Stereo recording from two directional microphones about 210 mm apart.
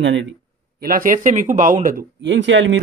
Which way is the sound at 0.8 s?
40° right (ahead or behind).